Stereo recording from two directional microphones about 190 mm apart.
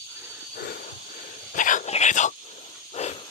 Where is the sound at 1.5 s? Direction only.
40° left (ahead or behind).